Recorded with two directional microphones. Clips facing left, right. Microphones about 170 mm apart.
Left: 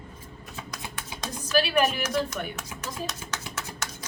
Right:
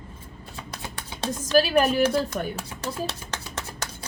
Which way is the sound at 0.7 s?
30° right (ahead or behind).